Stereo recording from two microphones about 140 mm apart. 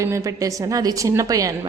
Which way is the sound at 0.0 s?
20° right (ahead or behind).